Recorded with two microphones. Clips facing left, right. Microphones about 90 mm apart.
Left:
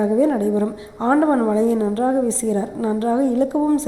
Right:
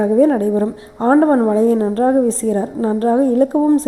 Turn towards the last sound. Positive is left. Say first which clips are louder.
# right 5 dB
turn(degrees=-45)  # may be behind; listen again after turning